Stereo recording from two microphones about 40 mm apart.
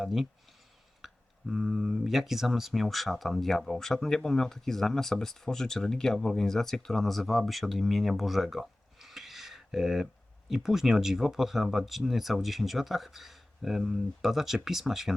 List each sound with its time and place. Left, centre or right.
0.0 s speech: centre
1.0 s a sound: centre
1.7 s speech: centre